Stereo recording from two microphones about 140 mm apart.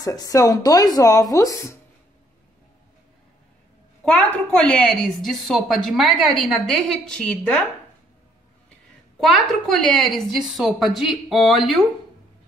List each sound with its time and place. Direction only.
0.0 s speech: 25° left (ahead or behind)
4.0 s a woman's voice: 10° left (ahead or behind)
9.2 s a woman's voice: centre (ahead or behind)